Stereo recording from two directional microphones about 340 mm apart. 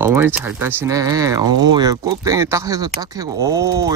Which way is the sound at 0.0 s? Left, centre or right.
Centre.